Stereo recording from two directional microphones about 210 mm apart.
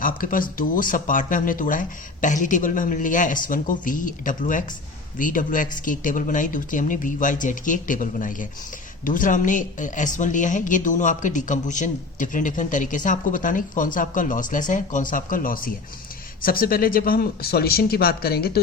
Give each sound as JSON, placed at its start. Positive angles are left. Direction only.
{"t": 0.0, "sound": "speech", "side_deg": 40}